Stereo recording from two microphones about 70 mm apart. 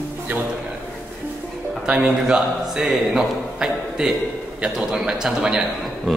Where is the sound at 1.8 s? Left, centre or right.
Centre.